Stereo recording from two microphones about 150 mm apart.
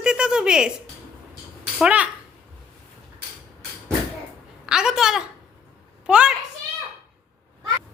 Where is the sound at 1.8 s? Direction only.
10° right (ahead or behind).